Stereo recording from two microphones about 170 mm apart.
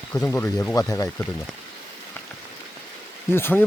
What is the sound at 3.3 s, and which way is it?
Speech, 15° left (ahead or behind).